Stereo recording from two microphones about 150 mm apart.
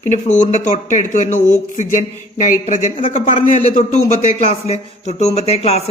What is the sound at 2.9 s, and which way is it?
A man's voice, 40° left (ahead or behind).